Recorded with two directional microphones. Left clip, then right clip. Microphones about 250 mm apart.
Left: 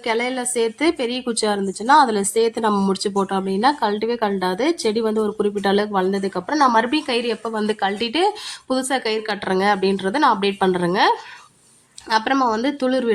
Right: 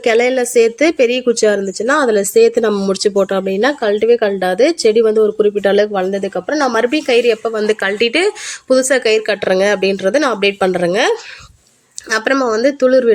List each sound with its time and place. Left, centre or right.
0.0 s speech: centre
12.1 s speech: centre